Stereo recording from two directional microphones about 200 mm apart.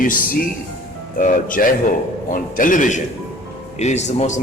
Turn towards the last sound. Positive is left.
turn(degrees=35)  # may be behind; listen again after turning